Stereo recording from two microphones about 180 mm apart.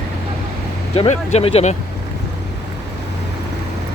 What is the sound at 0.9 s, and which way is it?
Speech, 35° left (ahead or behind).